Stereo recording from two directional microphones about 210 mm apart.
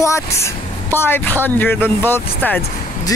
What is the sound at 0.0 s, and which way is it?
Speech, 15° left (ahead or behind).